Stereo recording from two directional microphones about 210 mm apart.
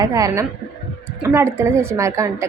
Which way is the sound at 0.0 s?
15° right (ahead or behind).